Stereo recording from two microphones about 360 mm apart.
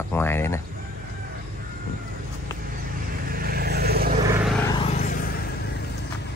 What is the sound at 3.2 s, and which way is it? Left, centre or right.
Vehicle, right.